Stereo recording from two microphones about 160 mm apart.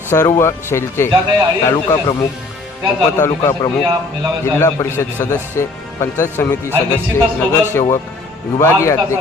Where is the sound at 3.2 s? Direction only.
15° left (ahead or behind).